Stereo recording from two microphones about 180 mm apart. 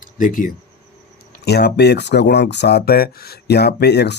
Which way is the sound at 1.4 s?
65° left (ahead or behind).